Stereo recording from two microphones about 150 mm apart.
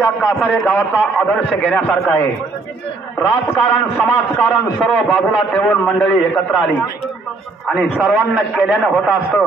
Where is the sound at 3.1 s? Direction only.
15° left (ahead or behind).